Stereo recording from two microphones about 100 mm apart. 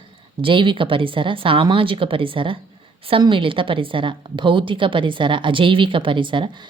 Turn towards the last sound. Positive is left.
turn(degrees=-55)  # may be behind; listen again after turning